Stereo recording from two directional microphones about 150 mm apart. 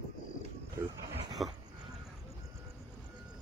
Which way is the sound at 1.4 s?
Centre (ahead or behind).